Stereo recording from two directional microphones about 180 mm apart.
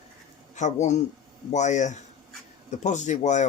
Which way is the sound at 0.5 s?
40° left (ahead or behind).